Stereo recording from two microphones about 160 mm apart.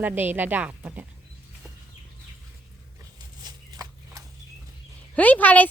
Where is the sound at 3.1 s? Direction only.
25° right (ahead or behind).